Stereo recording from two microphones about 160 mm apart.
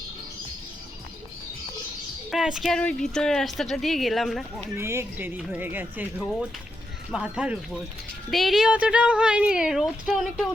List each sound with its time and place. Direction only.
2.3 s a woman's voice: 5° right (ahead or behind)
4.8 s a woman's voice: 15° right (ahead or behind)